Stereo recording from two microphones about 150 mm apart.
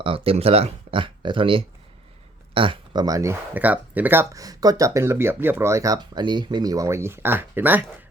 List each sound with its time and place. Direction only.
0.0 s speech: 40° right (ahead or behind); by 7.9 s 15° right (ahead or behind)